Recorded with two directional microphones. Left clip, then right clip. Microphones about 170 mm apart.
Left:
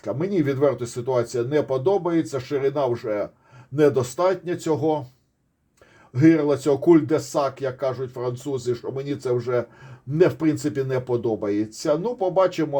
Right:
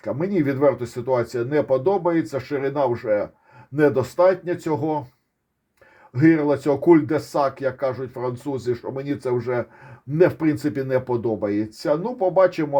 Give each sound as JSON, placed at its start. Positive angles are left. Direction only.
{"t": 0.0, "sound": "speech", "side_deg": -30}
{"t": 6.1, "sound": "speech", "side_deg": -30}